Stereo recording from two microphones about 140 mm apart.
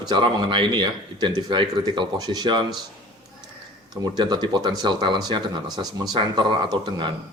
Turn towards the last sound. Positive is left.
turn(degrees=-35)  # may be behind; listen again after turning